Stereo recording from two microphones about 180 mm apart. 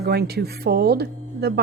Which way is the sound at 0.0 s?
60° right (ahead or behind).